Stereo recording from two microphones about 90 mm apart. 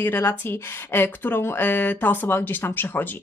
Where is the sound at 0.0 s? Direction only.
25° left (ahead or behind).